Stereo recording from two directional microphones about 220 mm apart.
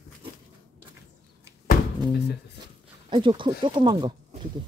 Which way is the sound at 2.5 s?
20° right (ahead or behind).